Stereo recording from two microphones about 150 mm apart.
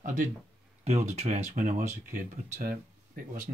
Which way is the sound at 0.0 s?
55° right (ahead or behind).